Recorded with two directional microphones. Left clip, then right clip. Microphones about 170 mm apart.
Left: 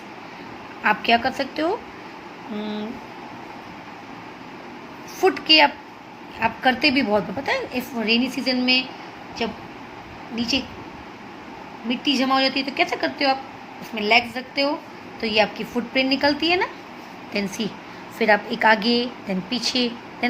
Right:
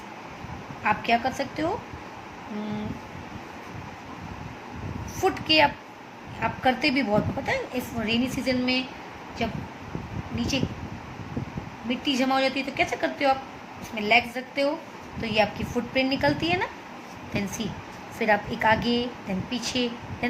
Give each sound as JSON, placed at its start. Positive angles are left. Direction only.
{"t": 0.8, "sound": "a woman's voice", "side_deg": 25}
{"t": 5.2, "sound": "a woman's voice", "side_deg": 15}
{"t": 10.3, "sound": "a woman's voice", "side_deg": 10}
{"t": 11.9, "sound": "a woman's voice", "side_deg": 15}